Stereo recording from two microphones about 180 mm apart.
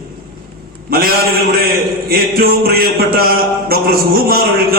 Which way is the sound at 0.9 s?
55° right (ahead or behind).